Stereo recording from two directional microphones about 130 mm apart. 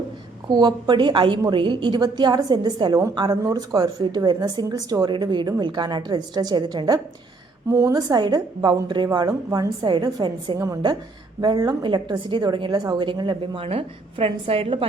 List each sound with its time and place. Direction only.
0.5 s speech: 35° right (ahead or behind)
10.6 s a woman's voice: 25° right (ahead or behind); by 14.8 s 45° right (ahead or behind)